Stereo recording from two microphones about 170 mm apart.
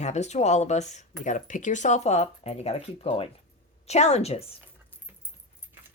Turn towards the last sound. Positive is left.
turn(degrees=35)  # may be behind; listen again after turning